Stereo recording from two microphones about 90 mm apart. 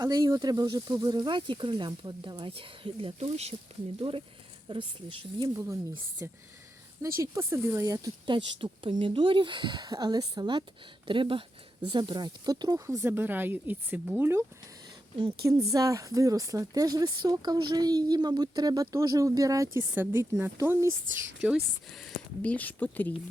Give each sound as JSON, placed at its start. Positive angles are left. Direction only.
{"t": 0.0, "sound": "speech", "side_deg": -45}
{"t": 4.7, "sound": "speech", "side_deg": -70}
{"t": 5.5, "sound": "speech", "side_deg": -35}
{"t": 8.3, "sound": "speech", "side_deg": -60}
{"t": 11.0, "sound": "speech", "side_deg": -75}
{"t": 11.9, "sound": "speech", "side_deg": -60}
{"t": 13.1, "sound": "speech", "side_deg": -25}
{"t": 15.4, "sound": "speech", "side_deg": -40}
{"t": 19.9, "sound": "speech", "side_deg": -20}
{"t": 21.8, "sound": "speech", "side_deg": 0}
{"t": 22.4, "sound": "speech", "side_deg": 15}